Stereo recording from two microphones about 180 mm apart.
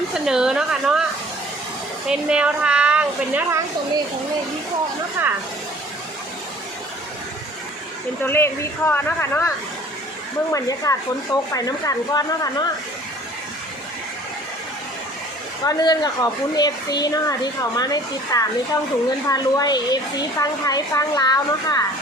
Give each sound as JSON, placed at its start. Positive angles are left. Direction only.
{"t": 0.1, "sound": "a woman's voice", "side_deg": -5}
{"t": 2.0, "sound": "a woman's voice", "side_deg": -5}
{"t": 5.2, "sound": "a woman's voice", "side_deg": -10}
{"t": 8.2, "sound": "speech", "side_deg": 15}
{"t": 10.5, "sound": "speech", "side_deg": 20}
{"t": 15.6, "sound": "speech", "side_deg": 20}